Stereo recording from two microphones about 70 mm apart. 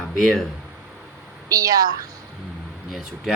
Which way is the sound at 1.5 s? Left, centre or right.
Right.